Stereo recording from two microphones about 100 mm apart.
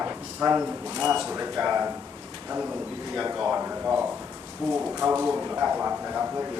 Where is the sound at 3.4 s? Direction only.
15° right (ahead or behind).